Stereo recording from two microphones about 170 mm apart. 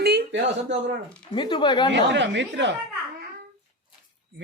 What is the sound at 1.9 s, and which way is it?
Speech, 90° right.